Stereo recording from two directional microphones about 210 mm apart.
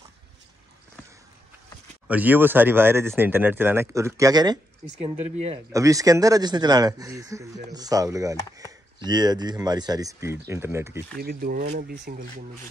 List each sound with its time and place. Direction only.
2.0 s speech: 10° right (ahead or behind)
5.7 s speech: 15° right (ahead or behind)
11.1 s speech: 45° right (ahead or behind)